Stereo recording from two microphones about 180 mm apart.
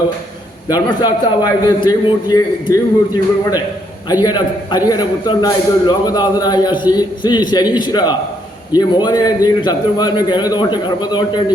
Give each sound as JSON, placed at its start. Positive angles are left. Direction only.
{"t": 0.7, "sound": "a man's voice", "side_deg": 20}